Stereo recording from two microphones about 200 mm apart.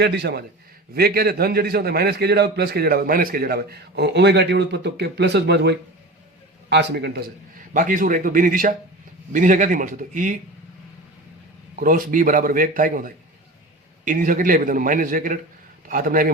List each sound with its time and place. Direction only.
0.0 s a man's voice: 55° right (ahead or behind)
7.7 s a man's voice: 40° right (ahead or behind)
11.8 s a man's voice: 45° right (ahead or behind)